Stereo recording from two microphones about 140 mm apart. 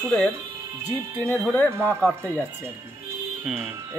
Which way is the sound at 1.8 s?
10° left (ahead or behind).